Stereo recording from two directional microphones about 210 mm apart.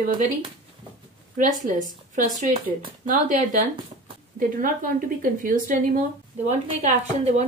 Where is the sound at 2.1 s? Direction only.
35° right (ahead or behind).